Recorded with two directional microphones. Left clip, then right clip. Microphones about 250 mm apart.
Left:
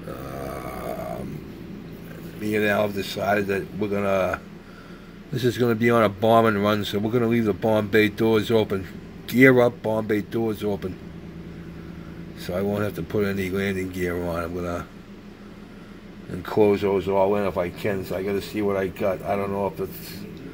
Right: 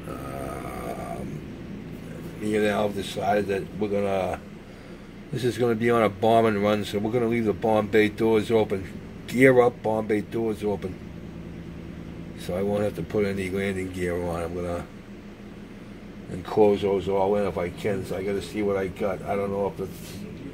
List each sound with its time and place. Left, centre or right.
0.4 s a sound: centre
2.4 s speech: centre
12.4 s speech: left
16.4 s speech: left